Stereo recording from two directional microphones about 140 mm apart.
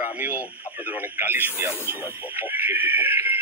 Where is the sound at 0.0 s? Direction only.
10° right (ahead or behind).